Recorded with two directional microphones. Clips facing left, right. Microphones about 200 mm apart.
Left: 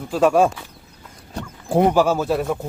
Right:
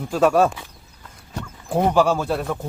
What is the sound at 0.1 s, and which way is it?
Speech, 5° left (ahead or behind).